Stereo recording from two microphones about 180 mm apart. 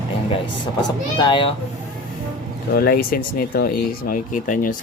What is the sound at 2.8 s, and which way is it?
Speech, 55° left (ahead or behind).